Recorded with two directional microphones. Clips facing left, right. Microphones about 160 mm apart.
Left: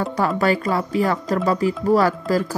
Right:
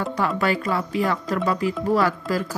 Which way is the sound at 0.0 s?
40° left (ahead or behind).